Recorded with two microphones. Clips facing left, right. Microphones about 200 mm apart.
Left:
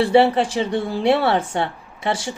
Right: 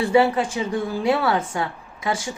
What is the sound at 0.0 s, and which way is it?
A woman's voice, 30° left (ahead or behind).